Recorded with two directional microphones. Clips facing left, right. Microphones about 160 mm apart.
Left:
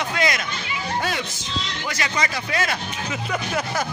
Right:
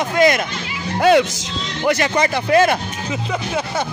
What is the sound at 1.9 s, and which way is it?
Speech, 55° right (ahead or behind).